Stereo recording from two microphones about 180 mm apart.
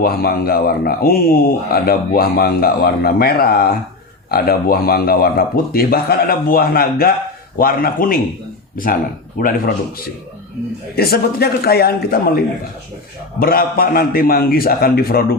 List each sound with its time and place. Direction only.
0.0 s a man's voice: 55° left (ahead or behind)
10.9 s speech: 60° left (ahead or behind)
13.4 s speech: 55° left (ahead or behind)